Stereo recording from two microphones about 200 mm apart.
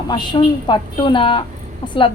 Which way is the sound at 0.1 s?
20° left (ahead or behind).